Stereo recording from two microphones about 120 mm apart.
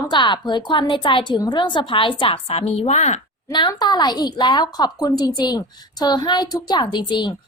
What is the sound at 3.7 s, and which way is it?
A woman's voice, 35° left (ahead or behind).